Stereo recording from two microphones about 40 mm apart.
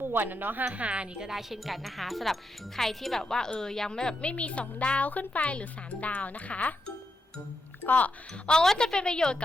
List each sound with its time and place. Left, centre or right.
0.0 s speech: right
0.7 s speech: right
1.3 s speech: centre; by 6.9 s left
7.8 s speech: left
8.4 s speech: centre